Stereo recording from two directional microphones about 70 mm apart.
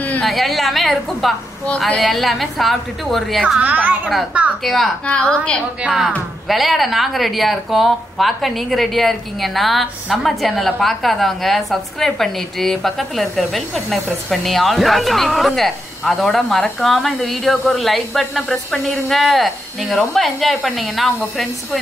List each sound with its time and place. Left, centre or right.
0.2 s speech: centre
3.4 s a woman's voice: right
4.6 s speech: centre
5.0 s a woman's voice: centre
5.8 s speech: centre